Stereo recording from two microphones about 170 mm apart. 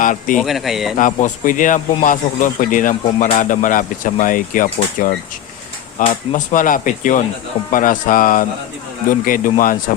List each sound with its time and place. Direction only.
0.0 s a man's voice: 50° left (ahead or behind)
0.3 s a man's voice: centre (ahead or behind)
0.9 s speech: 50° left (ahead or behind)